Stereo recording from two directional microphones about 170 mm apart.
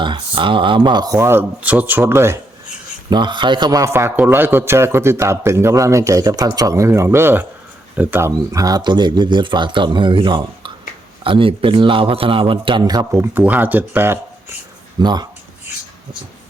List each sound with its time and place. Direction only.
0.0 s a man's voice: 30° right (ahead or behind)
3.1 s a man's voice: 25° right (ahead or behind)
15.0 s a man's voice: 25° right (ahead or behind)